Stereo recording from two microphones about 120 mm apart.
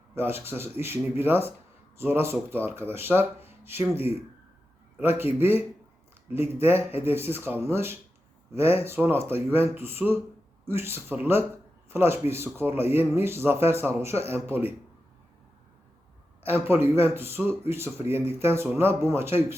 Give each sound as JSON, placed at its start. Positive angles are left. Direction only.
{"t": 0.1, "sound": "a man's voice", "side_deg": -20}
{"t": 16.4, "sound": "speech", "side_deg": -20}